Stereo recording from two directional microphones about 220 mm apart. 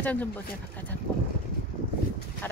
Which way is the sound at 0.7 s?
5° left (ahead or behind).